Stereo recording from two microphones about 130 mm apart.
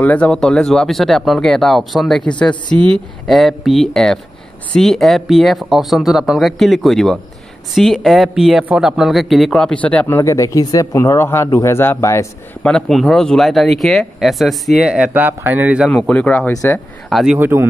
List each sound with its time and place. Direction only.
0.0 s a man's voice: 10° left (ahead or behind)
12.6 s speech: 5° left (ahead or behind)
16.1 s a man's voice: 10° left (ahead or behind)
17.1 s speech: 5° right (ahead or behind)
17.4 s speech: 15° right (ahead or behind)